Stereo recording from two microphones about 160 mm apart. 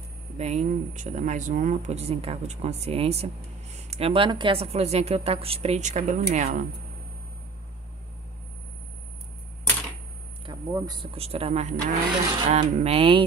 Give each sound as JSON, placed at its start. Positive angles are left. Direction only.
{"t": 0.4, "sound": "a woman's voice", "side_deg": -45}
{"t": 10.4, "sound": "speech", "side_deg": -25}
{"t": 11.1, "sound": "a woman's voice", "side_deg": -40}